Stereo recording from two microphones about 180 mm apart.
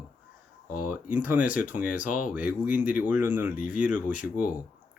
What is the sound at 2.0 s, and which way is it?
Speech, 50° left (ahead or behind).